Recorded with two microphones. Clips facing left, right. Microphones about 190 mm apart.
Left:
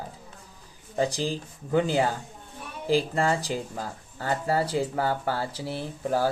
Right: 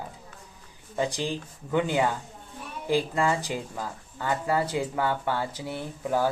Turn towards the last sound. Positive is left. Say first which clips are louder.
# left 1 dB
turn(degrees=35)  # may be behind; listen again after turning